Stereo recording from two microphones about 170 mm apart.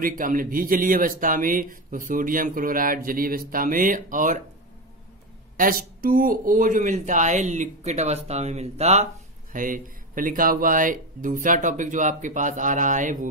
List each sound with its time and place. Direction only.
0.0 s speech: 55° right (ahead or behind)
5.6 s speech: 55° right (ahead or behind); by 9.0 s 40° right (ahead or behind)
9.5 s speech: 50° right (ahead or behind)